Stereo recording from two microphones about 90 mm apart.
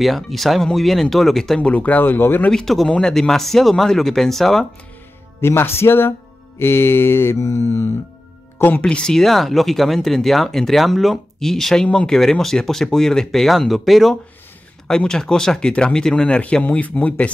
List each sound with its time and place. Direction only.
0.0 s speech: centre (ahead or behind)
1.7 s mantra: 15° left (ahead or behind)
2.5 s speech: centre (ahead or behind)
5.4 s mantra: 25° left (ahead or behind)
8.5 s speech: 20° left (ahead or behind)
8.8 s speech: 10° left (ahead or behind)